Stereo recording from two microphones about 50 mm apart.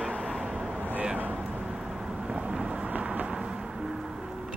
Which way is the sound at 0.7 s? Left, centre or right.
Right.